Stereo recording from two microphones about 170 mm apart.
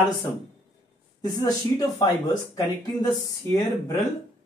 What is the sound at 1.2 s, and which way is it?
Speech, 20° left (ahead or behind).